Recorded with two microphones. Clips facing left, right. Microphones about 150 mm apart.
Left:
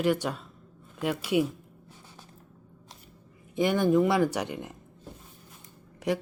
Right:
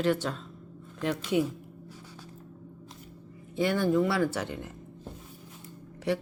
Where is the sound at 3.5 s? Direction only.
15° left (ahead or behind).